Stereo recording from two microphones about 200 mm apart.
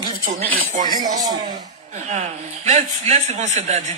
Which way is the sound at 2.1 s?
35° right (ahead or behind).